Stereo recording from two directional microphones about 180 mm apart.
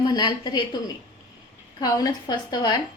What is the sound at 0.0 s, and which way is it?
Speech, 25° left (ahead or behind).